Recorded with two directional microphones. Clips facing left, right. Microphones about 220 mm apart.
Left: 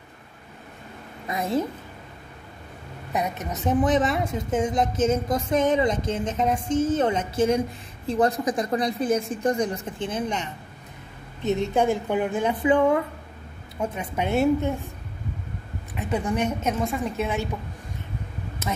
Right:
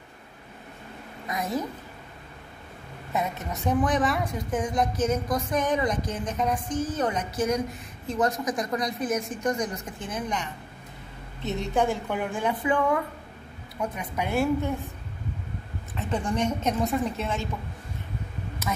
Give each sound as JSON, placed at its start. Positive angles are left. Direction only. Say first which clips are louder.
{"t": 1.2, "sound": "a woman's voice", "louder": "left 3 dB", "side_deg": 25}
{"t": 3.1, "sound": "a woman's voice", "louder": "left 2 dB", "side_deg": 20}
{"t": 11.7, "sound": "a woman's voice", "louder": "even", "side_deg": 15}
{"t": 15.9, "sound": "a woman's voice", "louder": "left 2 dB", "side_deg": 10}